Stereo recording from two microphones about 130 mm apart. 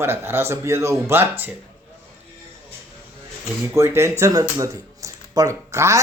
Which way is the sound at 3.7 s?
20° right (ahead or behind).